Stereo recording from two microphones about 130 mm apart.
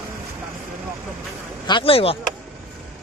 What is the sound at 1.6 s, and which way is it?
Speech, 40° left (ahead or behind).